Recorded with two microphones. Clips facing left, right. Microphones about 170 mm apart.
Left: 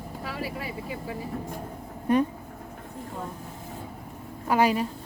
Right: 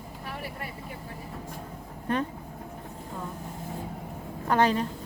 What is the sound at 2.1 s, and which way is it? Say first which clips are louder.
Speech: left 6 dB; 10° left (ahead or behind).